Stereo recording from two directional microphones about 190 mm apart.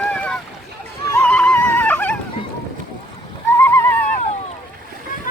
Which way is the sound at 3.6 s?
10° left (ahead or behind).